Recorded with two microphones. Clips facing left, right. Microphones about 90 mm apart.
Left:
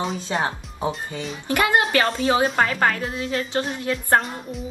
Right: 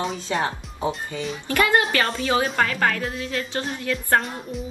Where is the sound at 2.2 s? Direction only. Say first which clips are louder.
Left 2 dB; 35° left (ahead or behind).